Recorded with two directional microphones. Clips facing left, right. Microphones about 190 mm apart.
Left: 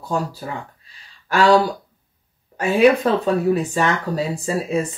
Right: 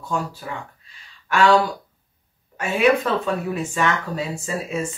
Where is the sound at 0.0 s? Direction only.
35° left (ahead or behind).